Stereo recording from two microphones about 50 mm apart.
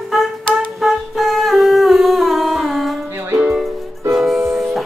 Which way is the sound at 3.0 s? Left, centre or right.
Right.